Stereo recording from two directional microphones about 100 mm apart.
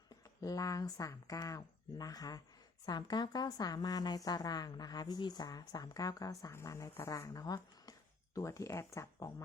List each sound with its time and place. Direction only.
0.4 s a woman's voice: 35° left (ahead or behind)